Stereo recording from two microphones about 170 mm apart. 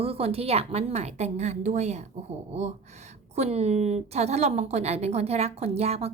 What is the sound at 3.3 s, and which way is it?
A woman's voice, 40° right (ahead or behind).